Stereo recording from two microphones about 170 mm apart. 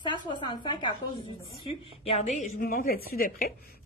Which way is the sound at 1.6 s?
35° left (ahead or behind).